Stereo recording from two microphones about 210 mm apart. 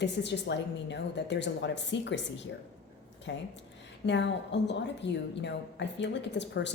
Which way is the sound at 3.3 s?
60° left (ahead or behind).